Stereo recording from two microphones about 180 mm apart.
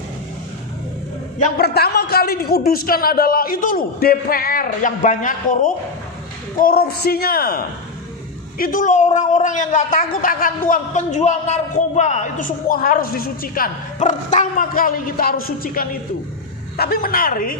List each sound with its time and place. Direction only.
1.4 s a man's voice: 60° left (ahead or behind)